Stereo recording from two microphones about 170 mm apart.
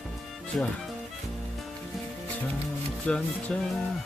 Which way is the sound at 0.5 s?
5° left (ahead or behind).